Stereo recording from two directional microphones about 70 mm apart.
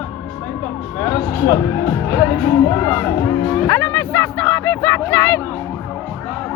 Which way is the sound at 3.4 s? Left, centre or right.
Left.